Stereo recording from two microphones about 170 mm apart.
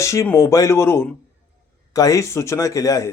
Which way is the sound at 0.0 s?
15° left (ahead or behind).